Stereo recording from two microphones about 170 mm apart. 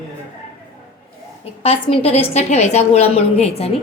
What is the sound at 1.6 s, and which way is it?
A woman's voice, 35° left (ahead or behind).